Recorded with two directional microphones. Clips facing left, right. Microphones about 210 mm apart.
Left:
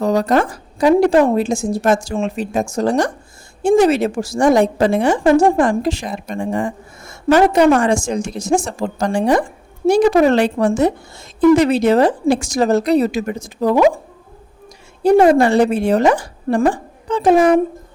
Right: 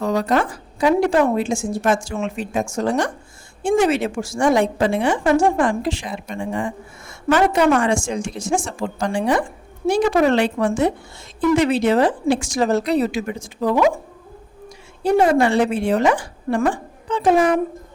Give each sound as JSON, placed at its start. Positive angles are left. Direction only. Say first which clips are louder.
{"t": 0.0, "sound": "a woman's voice", "louder": "left 4 dB", "side_deg": 40}
{"t": 15.4, "sound": "a woman's voice", "louder": "left 4 dB", "side_deg": 40}